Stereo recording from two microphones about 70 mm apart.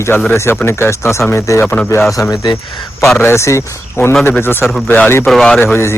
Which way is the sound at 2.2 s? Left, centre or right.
Left.